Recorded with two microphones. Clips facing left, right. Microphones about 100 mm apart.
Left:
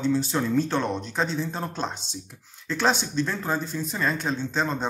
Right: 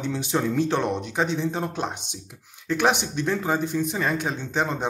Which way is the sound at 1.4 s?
15° right (ahead or behind).